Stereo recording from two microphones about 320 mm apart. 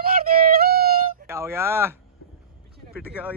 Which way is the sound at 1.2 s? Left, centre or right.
Centre.